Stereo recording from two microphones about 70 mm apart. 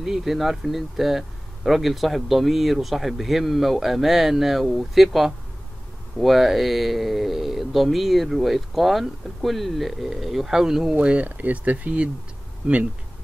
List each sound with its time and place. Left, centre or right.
0.0 s speech: centre
11.0 s speech: centre